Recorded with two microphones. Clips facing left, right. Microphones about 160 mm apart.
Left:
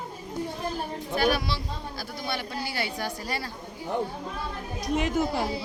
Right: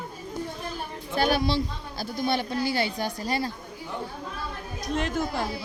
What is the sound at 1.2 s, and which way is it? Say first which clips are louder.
Speech: right 2 dB; 25° right (ahead or behind).